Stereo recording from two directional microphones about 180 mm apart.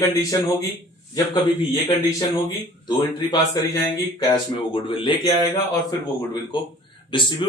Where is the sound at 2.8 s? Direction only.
25° left (ahead or behind).